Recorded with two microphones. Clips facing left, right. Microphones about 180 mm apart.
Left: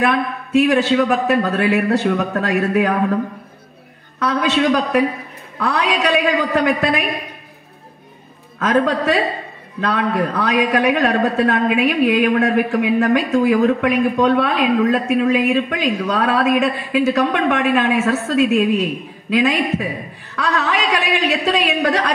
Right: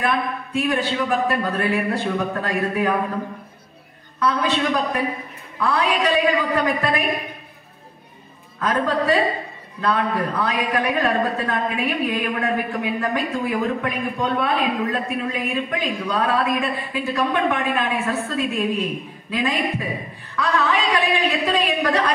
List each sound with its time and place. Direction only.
0.0 s a man's voice: 80° left
4.2 s a man's voice: 80° left
8.5 s a man's voice: 80° left
20.3 s a man's voice: 75° left (ahead or behind)